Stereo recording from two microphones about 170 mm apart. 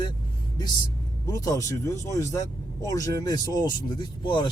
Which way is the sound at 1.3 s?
20° left (ahead or behind).